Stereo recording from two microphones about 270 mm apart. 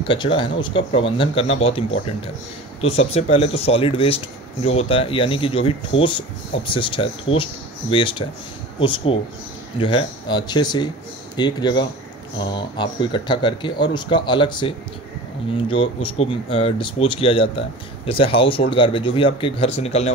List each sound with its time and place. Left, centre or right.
0.0 s speech: centre